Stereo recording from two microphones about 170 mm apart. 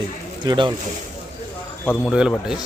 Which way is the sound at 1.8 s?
15° left (ahead or behind).